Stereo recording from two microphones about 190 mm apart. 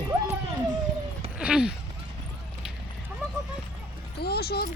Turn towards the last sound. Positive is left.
turn(degrees=55)  # may be behind; listen again after turning